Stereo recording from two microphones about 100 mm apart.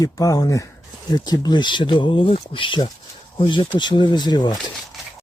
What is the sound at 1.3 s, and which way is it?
Speech, 45° left (ahead or behind).